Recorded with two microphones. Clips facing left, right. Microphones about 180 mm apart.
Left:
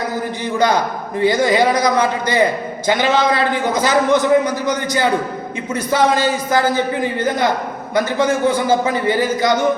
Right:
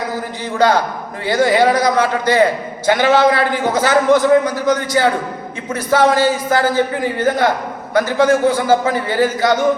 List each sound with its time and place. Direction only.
1.2 s a man's voice: 20° left (ahead or behind)